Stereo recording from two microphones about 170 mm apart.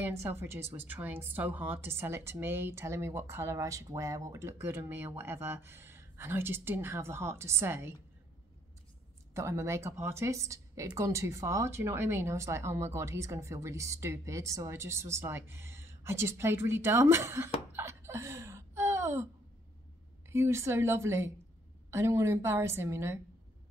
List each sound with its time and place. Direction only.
0.0 s speech: 15° right (ahead or behind)
9.3 s speech: 15° right (ahead or behind)
20.2 s speech: 15° right (ahead or behind)